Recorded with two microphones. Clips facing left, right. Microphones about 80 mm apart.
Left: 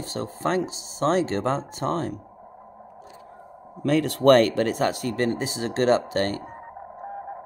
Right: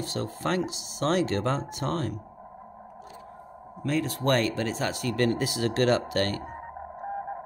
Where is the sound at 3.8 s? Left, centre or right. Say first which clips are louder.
Left 8 dB; left.